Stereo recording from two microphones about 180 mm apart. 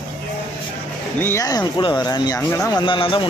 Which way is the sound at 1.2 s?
15° left (ahead or behind).